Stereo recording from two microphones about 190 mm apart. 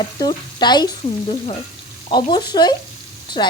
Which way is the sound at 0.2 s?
20° left (ahead or behind).